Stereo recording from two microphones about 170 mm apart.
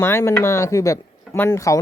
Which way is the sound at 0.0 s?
15° left (ahead or behind).